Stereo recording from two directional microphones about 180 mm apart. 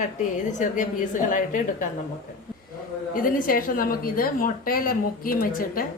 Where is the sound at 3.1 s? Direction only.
50° left (ahead or behind).